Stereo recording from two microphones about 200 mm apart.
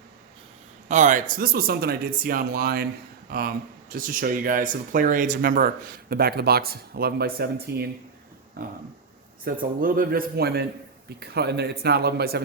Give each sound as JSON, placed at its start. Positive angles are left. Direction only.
{"t": 0.9, "sound": "speech", "side_deg": -40}
{"t": 9.4, "sound": "speech", "side_deg": -45}